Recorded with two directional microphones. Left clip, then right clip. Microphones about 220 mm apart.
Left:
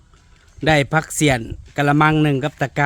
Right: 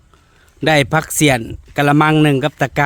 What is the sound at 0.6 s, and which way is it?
A man's voice, 25° right (ahead or behind).